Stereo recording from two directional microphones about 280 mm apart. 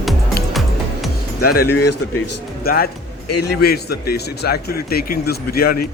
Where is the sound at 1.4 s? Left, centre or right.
Left.